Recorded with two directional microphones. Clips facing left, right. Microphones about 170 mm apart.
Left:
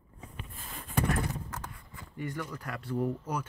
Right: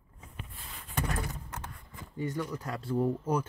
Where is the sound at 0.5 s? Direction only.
45° left (ahead or behind).